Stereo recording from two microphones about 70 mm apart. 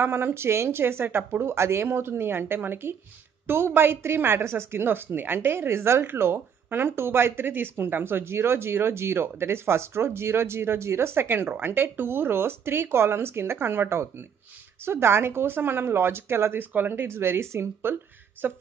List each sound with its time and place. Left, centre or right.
0.0 s a woman's voice: right